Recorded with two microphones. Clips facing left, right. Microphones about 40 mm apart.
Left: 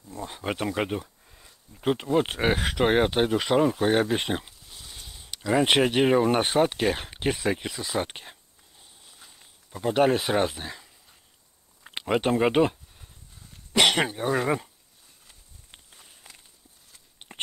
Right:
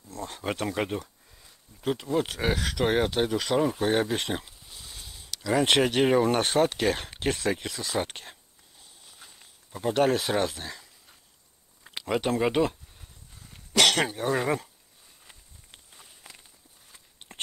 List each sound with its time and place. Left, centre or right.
0.1 s speech: centre
1.8 s speech: left
3.6 s a sound: centre
5.5 s speech: centre
13.7 s speech: centre
15.9 s walk: centre
17.2 s clip-clop: left